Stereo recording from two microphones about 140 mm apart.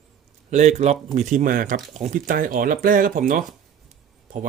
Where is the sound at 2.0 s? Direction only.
60° right (ahead or behind).